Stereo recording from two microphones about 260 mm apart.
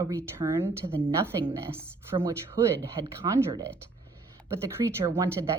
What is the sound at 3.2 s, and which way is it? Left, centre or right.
Speech, centre.